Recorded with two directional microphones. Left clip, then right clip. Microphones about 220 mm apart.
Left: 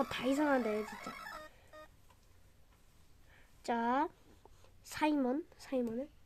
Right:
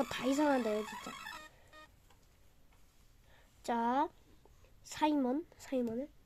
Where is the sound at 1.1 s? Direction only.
30° right (ahead or behind).